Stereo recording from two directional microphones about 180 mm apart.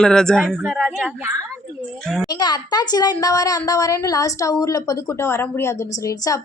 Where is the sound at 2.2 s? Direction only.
25° left (ahead or behind).